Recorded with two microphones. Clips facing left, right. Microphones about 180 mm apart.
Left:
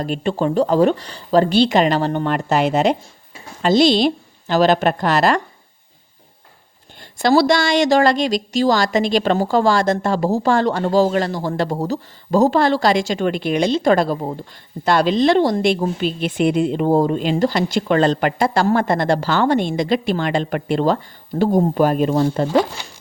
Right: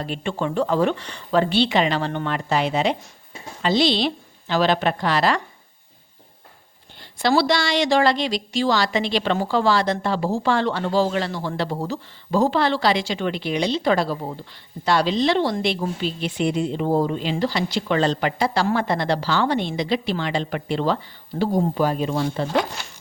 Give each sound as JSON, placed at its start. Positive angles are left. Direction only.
{"t": 0.0, "sound": "a woman's voice", "side_deg": 40}
{"t": 7.0, "sound": "a woman's voice", "side_deg": 45}